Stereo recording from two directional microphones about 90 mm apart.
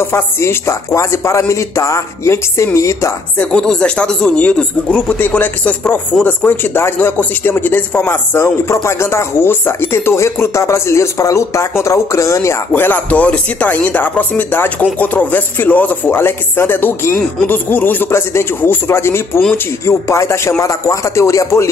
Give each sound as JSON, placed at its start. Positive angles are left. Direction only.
{"t": 0.0, "sound": "speech", "side_deg": 30}
{"t": 3.3, "sound": "speech", "side_deg": 10}
{"t": 12.7, "sound": "speech", "side_deg": 20}